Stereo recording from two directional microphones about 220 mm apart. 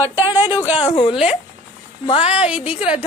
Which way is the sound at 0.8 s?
25° left (ahead or behind).